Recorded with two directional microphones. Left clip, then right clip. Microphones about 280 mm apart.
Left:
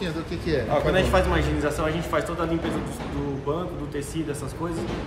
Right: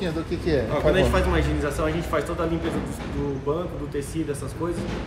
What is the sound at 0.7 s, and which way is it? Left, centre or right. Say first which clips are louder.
Speech: left 1 dB; centre.